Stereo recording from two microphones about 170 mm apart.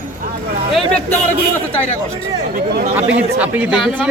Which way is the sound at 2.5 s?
60° right (ahead or behind).